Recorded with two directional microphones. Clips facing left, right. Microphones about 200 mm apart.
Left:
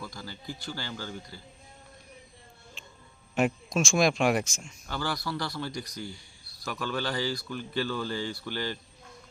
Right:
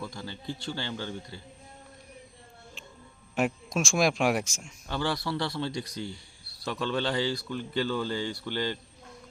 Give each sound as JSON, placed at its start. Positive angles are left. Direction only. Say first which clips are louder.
{"t": 0.0, "sound": "speech", "louder": "right 3 dB", "side_deg": -25}
{"t": 3.3, "sound": "speech", "louder": "left 1 dB", "side_deg": -5}
{"t": 4.9, "sound": "speech", "louder": "right 3 dB", "side_deg": -25}